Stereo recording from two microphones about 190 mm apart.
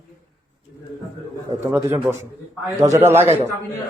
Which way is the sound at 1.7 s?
10° right (ahead or behind).